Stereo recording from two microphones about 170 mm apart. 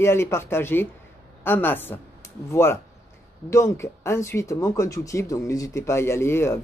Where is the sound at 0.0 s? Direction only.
15° left (ahead or behind).